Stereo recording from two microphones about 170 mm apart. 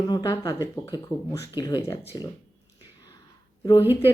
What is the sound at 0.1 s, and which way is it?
Speech, 25° left (ahead or behind).